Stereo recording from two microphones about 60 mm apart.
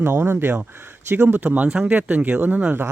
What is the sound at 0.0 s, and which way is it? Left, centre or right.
Speech, right.